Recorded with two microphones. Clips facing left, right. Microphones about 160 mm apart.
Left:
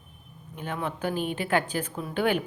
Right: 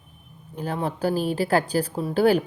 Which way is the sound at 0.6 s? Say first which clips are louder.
Right 5 dB; 35° right (ahead or behind).